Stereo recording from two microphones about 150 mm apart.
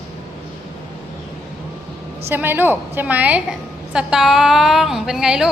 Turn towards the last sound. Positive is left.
turn(degrees=-5)  # may be behind; listen again after turning